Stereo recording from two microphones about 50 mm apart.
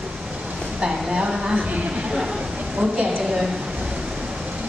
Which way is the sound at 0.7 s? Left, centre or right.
Centre.